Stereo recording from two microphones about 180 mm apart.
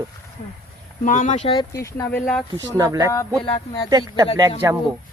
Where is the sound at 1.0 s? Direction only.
45° left (ahead or behind).